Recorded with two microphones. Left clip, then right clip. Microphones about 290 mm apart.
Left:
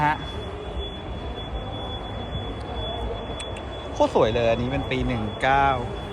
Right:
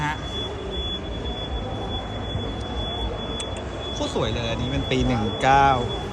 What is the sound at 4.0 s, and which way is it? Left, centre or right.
Speech, centre.